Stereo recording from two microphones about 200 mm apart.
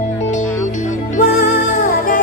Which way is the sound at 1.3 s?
45° left (ahead or behind).